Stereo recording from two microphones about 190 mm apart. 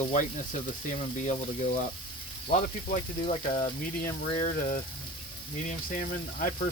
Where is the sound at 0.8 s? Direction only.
40° left (ahead or behind).